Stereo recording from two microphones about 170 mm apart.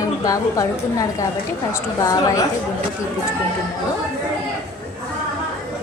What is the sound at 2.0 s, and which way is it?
Speech, 20° left (ahead or behind).